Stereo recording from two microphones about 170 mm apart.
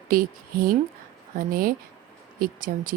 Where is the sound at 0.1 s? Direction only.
55° right (ahead or behind).